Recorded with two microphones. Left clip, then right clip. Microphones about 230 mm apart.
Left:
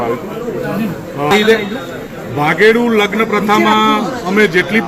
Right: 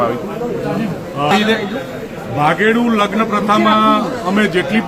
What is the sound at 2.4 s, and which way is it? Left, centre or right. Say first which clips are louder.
A man's voice: left 3 dB; centre.